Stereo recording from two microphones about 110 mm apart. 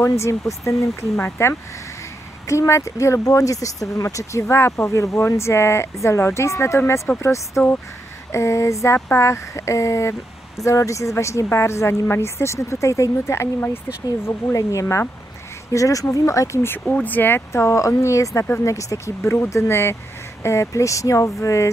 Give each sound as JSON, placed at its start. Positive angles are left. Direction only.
{"t": 0.0, "sound": "speech", "side_deg": 25}